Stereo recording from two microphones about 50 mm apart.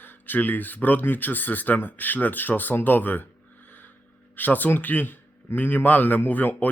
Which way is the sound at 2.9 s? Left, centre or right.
Left.